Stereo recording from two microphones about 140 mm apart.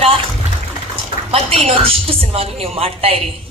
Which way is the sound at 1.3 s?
45° right (ahead or behind).